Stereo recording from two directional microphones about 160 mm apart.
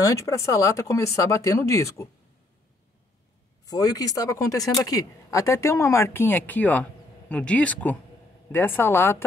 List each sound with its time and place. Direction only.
0.0 s speech: 20° left (ahead or behind)
3.6 s speech: 25° left (ahead or behind)